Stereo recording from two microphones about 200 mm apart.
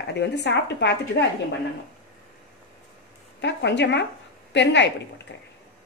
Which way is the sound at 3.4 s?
60° left (ahead or behind).